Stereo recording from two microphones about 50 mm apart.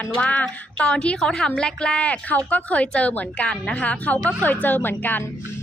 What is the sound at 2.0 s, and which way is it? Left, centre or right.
Speech, left.